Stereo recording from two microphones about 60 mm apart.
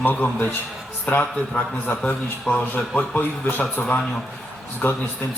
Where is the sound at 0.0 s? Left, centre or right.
Left.